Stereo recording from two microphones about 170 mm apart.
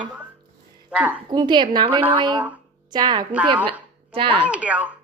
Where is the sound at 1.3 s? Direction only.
25° right (ahead or behind).